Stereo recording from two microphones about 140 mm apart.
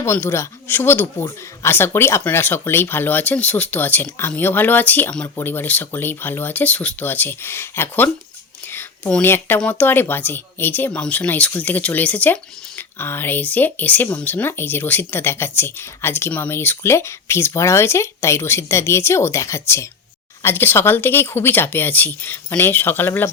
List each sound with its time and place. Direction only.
0.0 s speech: 15° left (ahead or behind)